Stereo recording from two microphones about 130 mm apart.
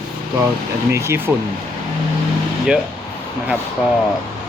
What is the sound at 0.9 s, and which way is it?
Speech, 20° right (ahead or behind).